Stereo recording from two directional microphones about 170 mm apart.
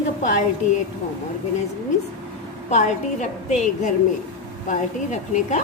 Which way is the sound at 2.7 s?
40° left (ahead or behind).